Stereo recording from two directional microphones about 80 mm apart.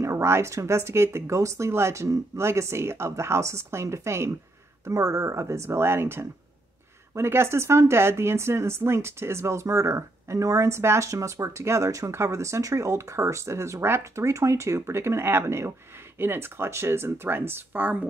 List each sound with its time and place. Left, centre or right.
0.0 s speech: right